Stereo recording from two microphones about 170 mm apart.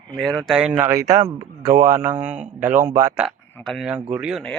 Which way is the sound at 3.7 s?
Centre (ahead or behind).